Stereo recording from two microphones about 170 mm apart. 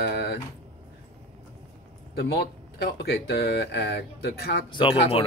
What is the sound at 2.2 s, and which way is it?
Speech, 70° left (ahead or behind).